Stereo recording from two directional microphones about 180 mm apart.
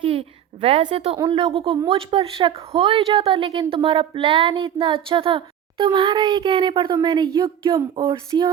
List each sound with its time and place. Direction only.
0.0 s a woman's voice: 30° right (ahead or behind)